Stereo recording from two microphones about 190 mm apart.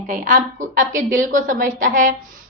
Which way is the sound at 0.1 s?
45° right (ahead or behind).